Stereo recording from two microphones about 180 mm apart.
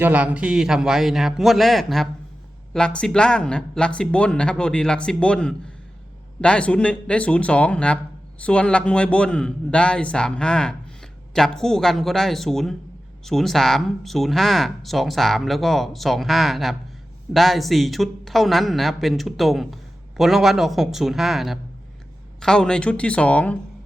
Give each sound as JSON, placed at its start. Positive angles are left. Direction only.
{"t": 0.0, "sound": "a man's voice", "side_deg": -10}